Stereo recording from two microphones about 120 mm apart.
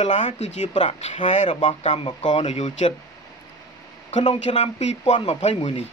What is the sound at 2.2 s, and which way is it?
Speech, 80° left.